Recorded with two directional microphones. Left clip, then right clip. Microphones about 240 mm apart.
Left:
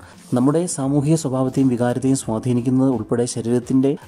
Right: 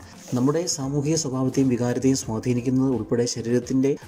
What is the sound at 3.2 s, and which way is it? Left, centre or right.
Speech, centre.